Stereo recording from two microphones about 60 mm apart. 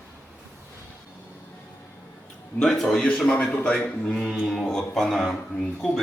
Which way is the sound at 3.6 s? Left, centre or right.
Left.